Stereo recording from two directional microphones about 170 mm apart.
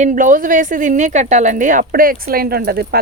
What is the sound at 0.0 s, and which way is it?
Speech, 50° right (ahead or behind).